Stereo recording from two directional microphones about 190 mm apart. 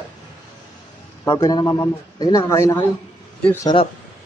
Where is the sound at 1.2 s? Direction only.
20° left (ahead or behind).